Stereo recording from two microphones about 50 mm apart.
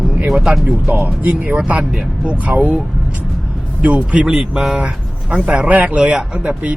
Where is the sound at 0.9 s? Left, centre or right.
Right.